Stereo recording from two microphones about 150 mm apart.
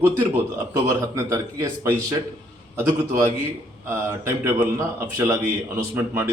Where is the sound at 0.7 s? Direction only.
20° right (ahead or behind).